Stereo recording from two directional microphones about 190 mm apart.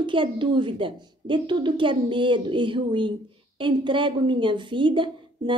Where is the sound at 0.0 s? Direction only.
25° right (ahead or behind).